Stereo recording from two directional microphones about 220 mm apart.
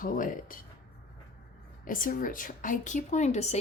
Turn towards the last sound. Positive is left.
turn(degrees=30)  # may be behind; listen again after turning